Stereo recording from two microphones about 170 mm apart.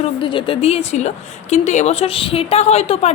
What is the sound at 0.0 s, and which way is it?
A woman's voice, 30° left (ahead or behind).